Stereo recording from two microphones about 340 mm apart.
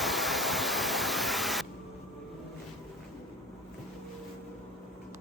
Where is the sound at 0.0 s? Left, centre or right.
Centre.